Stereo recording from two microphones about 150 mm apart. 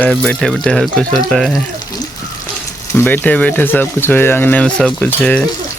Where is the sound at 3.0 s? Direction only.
10° left (ahead or behind).